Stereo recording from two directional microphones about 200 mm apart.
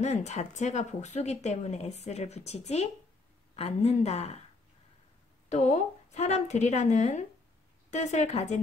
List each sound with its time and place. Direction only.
0.0 s speech: 35° left (ahead or behind)
5.5 s speech: 35° left (ahead or behind)